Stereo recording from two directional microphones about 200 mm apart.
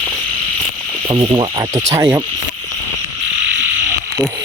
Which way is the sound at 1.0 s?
25° right (ahead or behind).